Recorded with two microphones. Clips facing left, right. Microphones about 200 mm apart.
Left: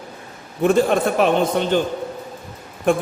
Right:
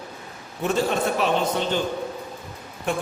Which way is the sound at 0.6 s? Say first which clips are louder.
Left 7 dB; 55° left (ahead or behind).